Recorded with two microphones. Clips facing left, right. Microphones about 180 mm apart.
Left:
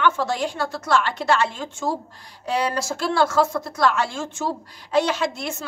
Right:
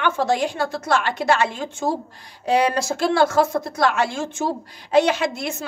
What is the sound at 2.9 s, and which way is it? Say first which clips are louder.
A woman's voice: right 3 dB; 20° right (ahead or behind).